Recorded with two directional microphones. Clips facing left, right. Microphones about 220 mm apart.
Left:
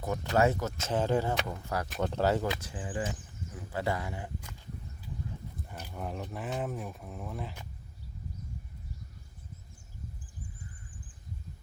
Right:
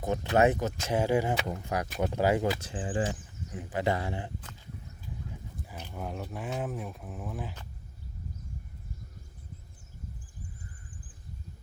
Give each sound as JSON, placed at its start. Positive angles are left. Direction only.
{"t": 0.0, "sound": "speech", "side_deg": -20}
{"t": 2.6, "sound": "speech", "side_deg": -25}
{"t": 5.9, "sound": "speech", "side_deg": 0}